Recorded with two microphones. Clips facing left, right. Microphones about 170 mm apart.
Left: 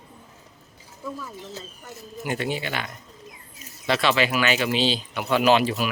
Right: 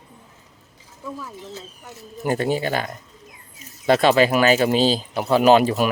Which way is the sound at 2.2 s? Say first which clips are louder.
Right 6 dB; 40° right (ahead or behind).